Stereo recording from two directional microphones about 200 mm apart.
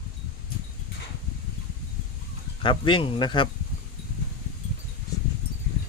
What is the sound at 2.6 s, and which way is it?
Speech, 25° left (ahead or behind).